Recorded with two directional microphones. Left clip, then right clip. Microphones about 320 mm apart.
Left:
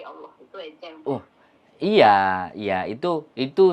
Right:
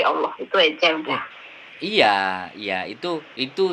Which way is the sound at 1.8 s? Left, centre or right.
Left.